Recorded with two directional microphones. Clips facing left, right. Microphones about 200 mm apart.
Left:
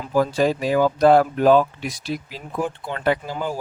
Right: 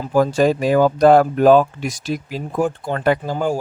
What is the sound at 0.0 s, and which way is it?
Speech, 45° right (ahead or behind).